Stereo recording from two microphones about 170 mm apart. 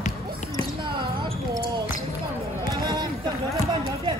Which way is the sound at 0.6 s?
30° right (ahead or behind).